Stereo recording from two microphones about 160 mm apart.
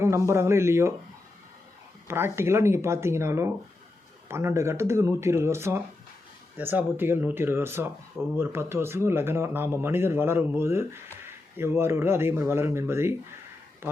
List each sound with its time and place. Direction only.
0.0 s speech: 15° right (ahead or behind)
2.0 s speech: 15° right (ahead or behind)